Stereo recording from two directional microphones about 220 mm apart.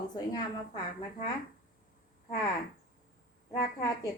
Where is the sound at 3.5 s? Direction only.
45° left (ahead or behind).